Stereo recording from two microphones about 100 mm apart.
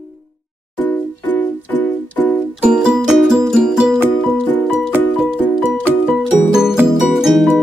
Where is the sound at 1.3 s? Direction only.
15° left (ahead or behind).